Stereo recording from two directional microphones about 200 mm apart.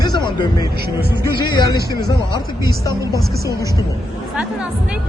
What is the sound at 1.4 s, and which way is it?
Speech, 20° left (ahead or behind).